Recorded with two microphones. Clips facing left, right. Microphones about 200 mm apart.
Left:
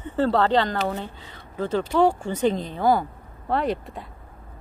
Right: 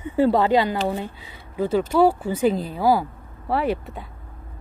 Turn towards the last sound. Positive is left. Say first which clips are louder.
# right 2 dB
turn(degrees=-5)  # may be behind; listen again after turning